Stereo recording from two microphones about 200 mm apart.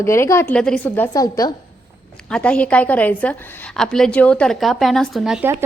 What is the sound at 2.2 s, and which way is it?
A woman's voice, 5° left (ahead or behind).